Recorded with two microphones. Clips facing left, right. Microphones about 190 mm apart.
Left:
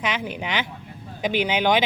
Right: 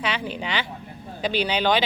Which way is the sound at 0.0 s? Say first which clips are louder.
Even; 15° left (ahead or behind).